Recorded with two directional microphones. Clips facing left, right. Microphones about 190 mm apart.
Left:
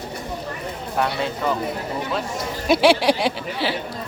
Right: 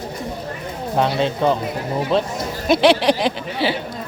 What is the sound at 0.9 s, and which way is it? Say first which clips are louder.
Speech: right 5 dB; 25° right (ahead or behind).